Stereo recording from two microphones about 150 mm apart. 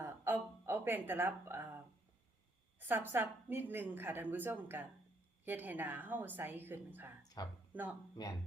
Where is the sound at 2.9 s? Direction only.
15° right (ahead or behind).